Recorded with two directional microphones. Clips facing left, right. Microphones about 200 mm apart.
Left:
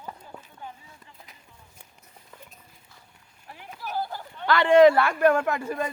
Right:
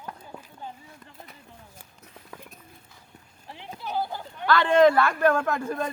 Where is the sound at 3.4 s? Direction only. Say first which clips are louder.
Right 2 dB; 30° right (ahead or behind).